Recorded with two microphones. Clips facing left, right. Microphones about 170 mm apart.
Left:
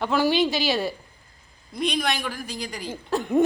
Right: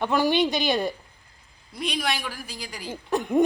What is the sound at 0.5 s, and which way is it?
Speech, 5° left (ahead or behind).